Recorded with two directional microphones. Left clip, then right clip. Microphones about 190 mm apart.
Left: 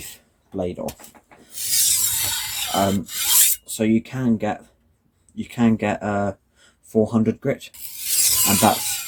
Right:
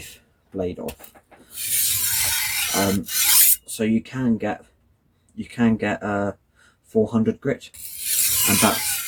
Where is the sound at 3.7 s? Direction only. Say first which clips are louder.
Left 2 dB; 30° left (ahead or behind).